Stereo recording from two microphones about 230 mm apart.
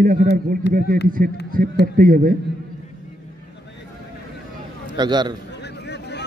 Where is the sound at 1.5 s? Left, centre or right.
Right.